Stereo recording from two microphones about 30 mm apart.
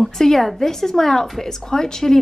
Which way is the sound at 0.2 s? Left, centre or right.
Centre.